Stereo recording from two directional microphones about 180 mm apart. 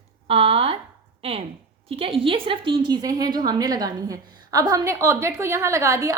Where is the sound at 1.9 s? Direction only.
30° right (ahead or behind).